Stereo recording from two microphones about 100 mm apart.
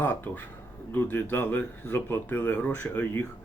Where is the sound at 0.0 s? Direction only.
20° left (ahead or behind).